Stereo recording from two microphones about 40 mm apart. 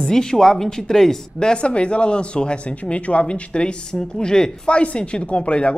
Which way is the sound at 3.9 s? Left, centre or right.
Centre.